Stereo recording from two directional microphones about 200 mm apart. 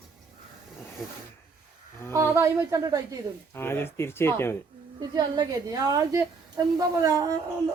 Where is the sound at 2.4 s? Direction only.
15° right (ahead or behind).